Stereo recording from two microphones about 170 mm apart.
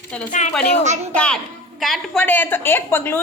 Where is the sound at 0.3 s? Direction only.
45° left (ahead or behind).